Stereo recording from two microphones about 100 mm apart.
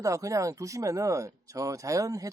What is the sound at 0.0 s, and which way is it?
Speech, 35° right (ahead or behind).